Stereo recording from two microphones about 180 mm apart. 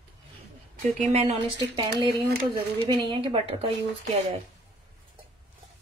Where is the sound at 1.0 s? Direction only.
35° right (ahead or behind).